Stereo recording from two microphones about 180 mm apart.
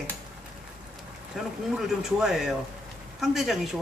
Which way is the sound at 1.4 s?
Centre (ahead or behind).